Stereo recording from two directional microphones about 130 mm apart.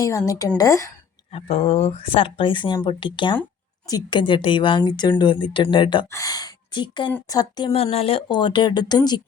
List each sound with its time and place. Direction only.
0.0 s a woman's voice: 25° left (ahead or behind)
1.3 s a woman's voice: 50° left (ahead or behind)
6.1 s a woman's voice: 25° left (ahead or behind)
7.7 s a woman's voice: 50° left (ahead or behind); by 9.2 s 30° left (ahead or behind)